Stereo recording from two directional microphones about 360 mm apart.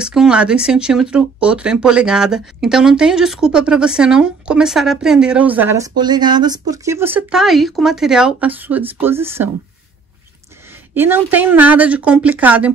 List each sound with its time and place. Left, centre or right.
0.0 s speech: centre
11.0 s speech: centre